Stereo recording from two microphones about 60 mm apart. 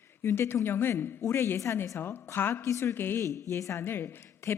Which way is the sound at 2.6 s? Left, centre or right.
Left.